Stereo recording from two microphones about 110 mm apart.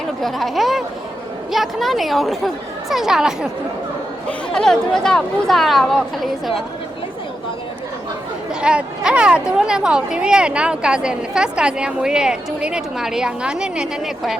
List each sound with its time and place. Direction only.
0.2 s speech: centre (ahead or behind)
4.3 s speech: 5° left (ahead or behind)
8.6 s speech: 10° right (ahead or behind)